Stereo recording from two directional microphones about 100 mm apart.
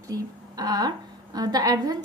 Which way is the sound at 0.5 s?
40° right (ahead or behind).